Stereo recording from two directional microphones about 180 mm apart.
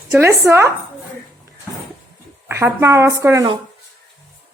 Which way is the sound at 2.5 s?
15° right (ahead or behind).